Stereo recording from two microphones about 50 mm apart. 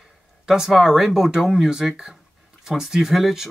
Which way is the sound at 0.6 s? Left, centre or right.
Centre.